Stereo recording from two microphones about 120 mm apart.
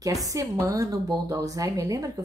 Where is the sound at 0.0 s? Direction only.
30° right (ahead or behind).